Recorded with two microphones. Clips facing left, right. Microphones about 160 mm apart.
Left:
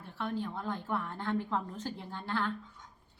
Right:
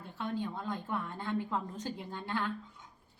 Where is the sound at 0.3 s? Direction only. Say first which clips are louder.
Right 1 dB; 15° right (ahead or behind).